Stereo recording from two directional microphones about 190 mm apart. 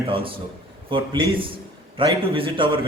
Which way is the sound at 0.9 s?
25° right (ahead or behind).